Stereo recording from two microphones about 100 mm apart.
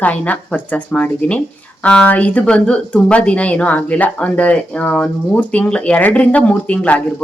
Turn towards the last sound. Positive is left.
turn(degrees=15)  # may be behind; listen again after turning